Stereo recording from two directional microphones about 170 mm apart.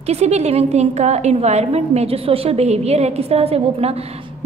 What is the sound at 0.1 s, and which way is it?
A woman's voice, 40° right (ahead or behind).